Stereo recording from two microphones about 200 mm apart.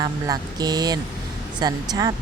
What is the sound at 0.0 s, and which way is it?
Speech, 20° right (ahead or behind).